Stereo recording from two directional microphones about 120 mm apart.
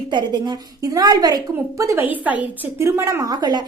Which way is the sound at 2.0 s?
15° right (ahead or behind).